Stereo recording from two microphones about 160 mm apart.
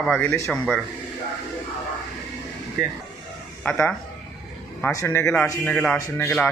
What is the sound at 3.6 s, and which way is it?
A man's voice, 10° left (ahead or behind).